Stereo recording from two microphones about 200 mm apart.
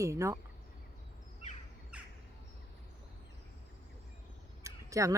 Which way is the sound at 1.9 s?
5° right (ahead or behind).